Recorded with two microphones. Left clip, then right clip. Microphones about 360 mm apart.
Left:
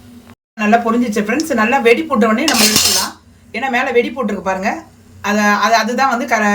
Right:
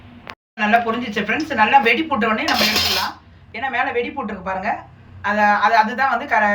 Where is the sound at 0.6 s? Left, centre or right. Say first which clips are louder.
Left 4 dB; left.